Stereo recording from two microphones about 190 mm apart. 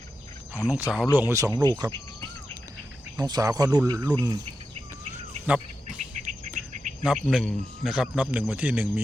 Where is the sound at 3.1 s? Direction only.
20° right (ahead or behind).